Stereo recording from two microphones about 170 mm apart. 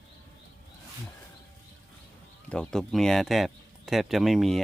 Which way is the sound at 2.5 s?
5° left (ahead or behind).